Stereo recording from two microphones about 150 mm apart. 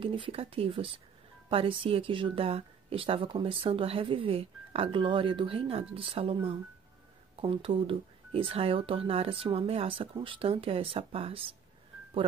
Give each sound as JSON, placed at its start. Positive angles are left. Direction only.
{"t": 0.0, "sound": "speech", "side_deg": -35}